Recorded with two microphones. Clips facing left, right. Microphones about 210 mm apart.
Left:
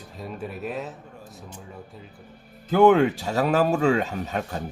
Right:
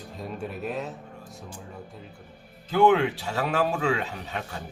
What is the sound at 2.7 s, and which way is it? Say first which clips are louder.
Speech: left 4 dB; 45° left (ahead or behind).